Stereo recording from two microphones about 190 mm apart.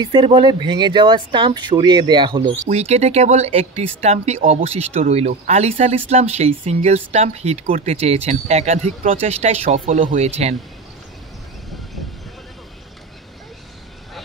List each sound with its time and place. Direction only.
0.0 s speech: 25° right (ahead or behind)